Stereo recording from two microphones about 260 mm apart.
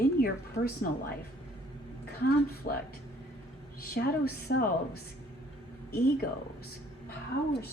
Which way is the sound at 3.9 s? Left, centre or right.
Left.